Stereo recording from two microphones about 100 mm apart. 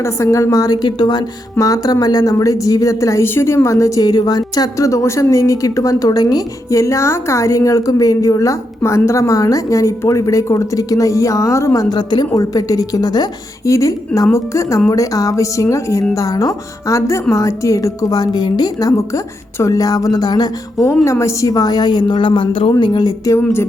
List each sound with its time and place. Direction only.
0.0 s a woman's voice: 30° left (ahead or behind)
20.8 s a woman's voice: 30° left (ahead or behind); by 22.7 s 60° left (ahead or behind)
22.8 s a woman's voice: 50° left (ahead or behind); by 23.6 s 25° left (ahead or behind)